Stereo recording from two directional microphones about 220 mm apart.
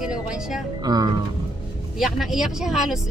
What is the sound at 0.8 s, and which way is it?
Speech, 20° right (ahead or behind).